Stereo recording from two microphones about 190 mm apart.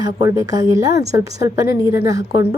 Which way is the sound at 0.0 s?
20° right (ahead or behind).